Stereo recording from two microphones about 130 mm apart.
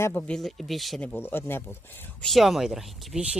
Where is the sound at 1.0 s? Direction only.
15° left (ahead or behind).